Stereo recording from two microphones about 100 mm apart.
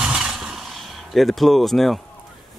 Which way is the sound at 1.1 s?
Centre (ahead or behind).